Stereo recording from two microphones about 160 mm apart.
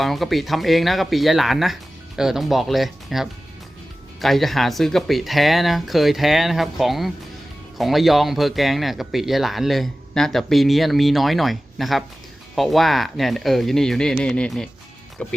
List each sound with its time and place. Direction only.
0.0 s speech: centre (ahead or behind)